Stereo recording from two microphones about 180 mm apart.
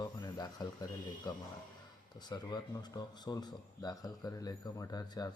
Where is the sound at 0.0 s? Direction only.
20° left (ahead or behind).